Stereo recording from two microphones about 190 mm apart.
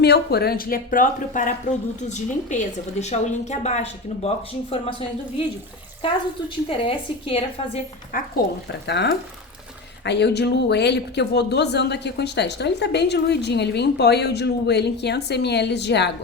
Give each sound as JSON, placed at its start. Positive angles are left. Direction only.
{"t": 0.0, "sound": "a woman's voice", "side_deg": 60}
{"t": 6.7, "sound": "a woman's voice", "side_deg": 30}
{"t": 8.1, "sound": "speech", "side_deg": 45}
{"t": 8.9, "sound": "speech", "side_deg": 65}